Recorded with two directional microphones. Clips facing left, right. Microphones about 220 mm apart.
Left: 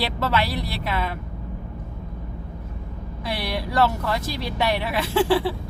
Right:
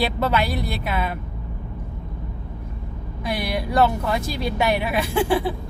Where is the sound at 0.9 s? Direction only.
10° right (ahead or behind).